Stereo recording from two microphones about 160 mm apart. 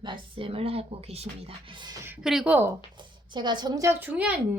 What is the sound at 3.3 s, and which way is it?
A woman's voice, 25° right (ahead or behind).